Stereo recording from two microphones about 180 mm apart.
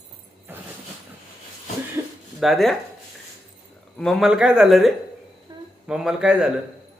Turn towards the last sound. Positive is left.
turn(degrees=-5)  # may be behind; listen again after turning